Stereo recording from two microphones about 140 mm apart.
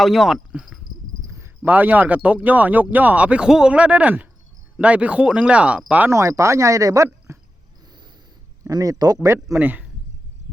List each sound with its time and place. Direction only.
0.0 s speech: centre (ahead or behind)
1.3 s speech: 15° right (ahead or behind)
8.6 s speech: 25° right (ahead or behind)